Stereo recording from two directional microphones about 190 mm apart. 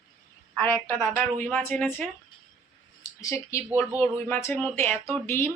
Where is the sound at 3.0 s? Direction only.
15° left (ahead or behind).